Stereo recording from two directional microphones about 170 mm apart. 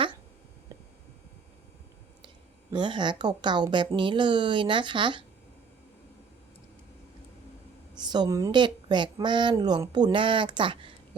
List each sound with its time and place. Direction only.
0.7 s a sound: 20° right (ahead or behind)
2.7 s a woman's voice: 25° right (ahead or behind)
7.9 s a woman's voice: 25° right (ahead or behind)